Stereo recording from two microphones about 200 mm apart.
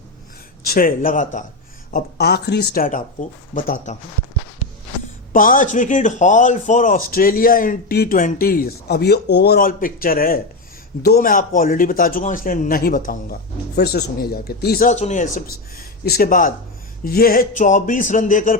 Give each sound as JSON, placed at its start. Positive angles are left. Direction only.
{"t": 0.6, "sound": "speech", "side_deg": 45}
{"t": 1.9, "sound": "speech", "side_deg": 50}
{"t": 5.3, "sound": "speech", "side_deg": 40}
{"t": 14.8, "sound": "speech", "side_deg": 35}
{"t": 16.0, "sound": "speech", "side_deg": 50}